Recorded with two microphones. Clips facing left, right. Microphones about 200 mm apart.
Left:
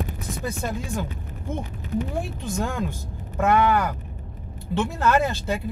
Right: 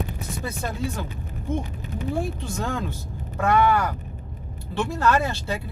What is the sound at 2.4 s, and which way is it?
Speech, 15° left (ahead or behind).